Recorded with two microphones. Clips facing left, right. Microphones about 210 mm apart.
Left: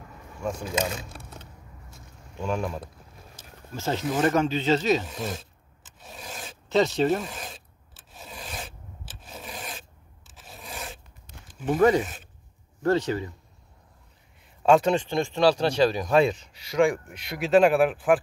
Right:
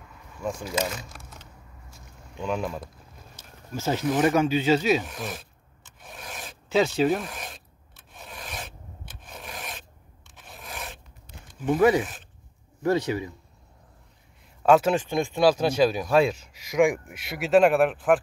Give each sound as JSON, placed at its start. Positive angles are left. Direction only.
{"t": 2.3, "sound": "speech", "side_deg": 0}
{"t": 3.3, "sound": "a sound", "side_deg": -5}
{"t": 4.1, "sound": "speech", "side_deg": -5}
{"t": 5.0, "sound": "speech", "side_deg": 25}
{"t": 6.0, "sound": "filing", "side_deg": 25}
{"t": 6.4, "sound": "rub", "side_deg": -5}
{"t": 8.3, "sound": "filing", "side_deg": 30}
{"t": 10.7, "sound": "filing", "side_deg": 0}
{"t": 11.8, "sound": "speech", "side_deg": -5}
{"t": 14.6, "sound": "speech", "side_deg": -5}